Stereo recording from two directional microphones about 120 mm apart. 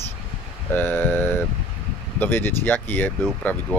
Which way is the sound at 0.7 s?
15° left (ahead or behind).